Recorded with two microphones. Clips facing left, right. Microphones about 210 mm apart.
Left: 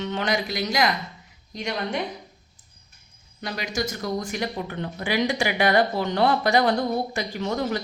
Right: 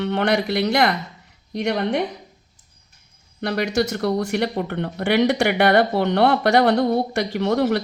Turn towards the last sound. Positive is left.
turn(degrees=-65)  # may be behind; listen again after turning